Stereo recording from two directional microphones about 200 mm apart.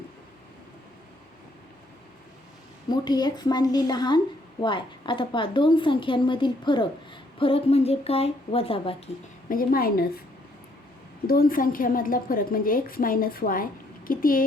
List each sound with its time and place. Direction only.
2.9 s a woman's voice: 20° left (ahead or behind)
9.5 s a woman's voice: 45° left (ahead or behind)
11.3 s a woman's voice: 45° left (ahead or behind)